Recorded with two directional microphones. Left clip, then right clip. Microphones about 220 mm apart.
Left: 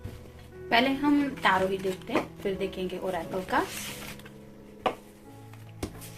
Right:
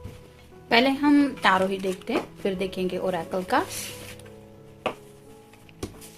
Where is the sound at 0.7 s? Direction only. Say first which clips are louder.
Right 4 dB; 50° right (ahead or behind).